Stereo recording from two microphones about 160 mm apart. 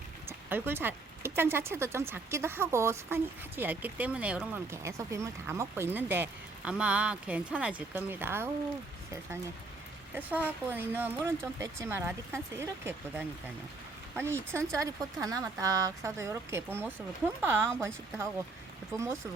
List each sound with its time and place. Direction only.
0.3 s speech: 15° right (ahead or behind)
10.2 s speech: 10° right (ahead or behind)
18.9 s speech: 15° right (ahead or behind)